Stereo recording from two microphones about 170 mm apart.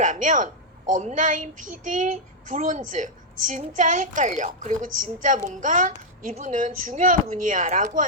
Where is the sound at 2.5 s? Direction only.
45° right (ahead or behind).